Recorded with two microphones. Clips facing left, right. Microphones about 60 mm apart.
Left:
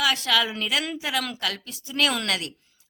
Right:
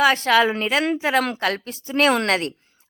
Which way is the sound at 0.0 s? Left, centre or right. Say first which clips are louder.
Right 7 dB; right.